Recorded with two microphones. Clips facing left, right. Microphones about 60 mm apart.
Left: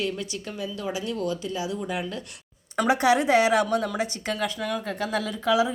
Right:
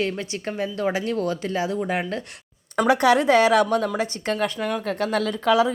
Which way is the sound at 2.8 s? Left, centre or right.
Right.